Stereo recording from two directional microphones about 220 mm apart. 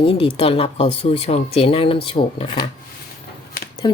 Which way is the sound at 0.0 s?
25° left (ahead or behind).